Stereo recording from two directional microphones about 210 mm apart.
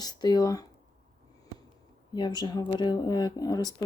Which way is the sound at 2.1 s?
20° left (ahead or behind).